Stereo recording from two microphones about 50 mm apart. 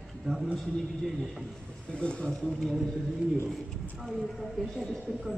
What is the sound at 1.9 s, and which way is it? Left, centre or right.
Speech, left.